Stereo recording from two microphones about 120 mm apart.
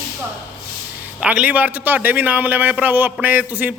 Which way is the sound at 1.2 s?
10° right (ahead or behind).